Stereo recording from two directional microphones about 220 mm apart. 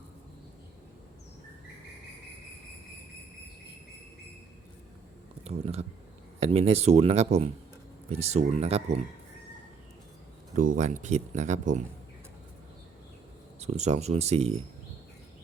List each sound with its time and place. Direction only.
5.5 s speech: 30° right (ahead or behind)
10.8 s speech: 35° right (ahead or behind)
13.6 s speech: 30° right (ahead or behind)